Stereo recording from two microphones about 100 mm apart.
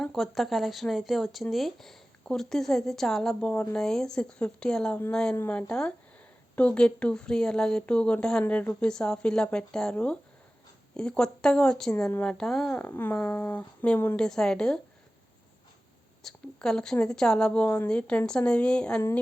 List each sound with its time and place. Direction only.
0.0 s speech: centre (ahead or behind)
3.5 s speech: 15° left (ahead or behind)
12.7 s speech: 15° left (ahead or behind)
16.2 s speech: 5° left (ahead or behind)